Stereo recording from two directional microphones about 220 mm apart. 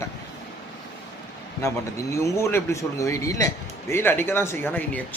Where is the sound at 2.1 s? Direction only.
10° left (ahead or behind).